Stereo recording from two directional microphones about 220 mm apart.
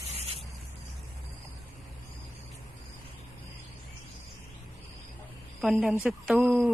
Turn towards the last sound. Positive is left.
turn(degrees=-5)  # may be behind; listen again after turning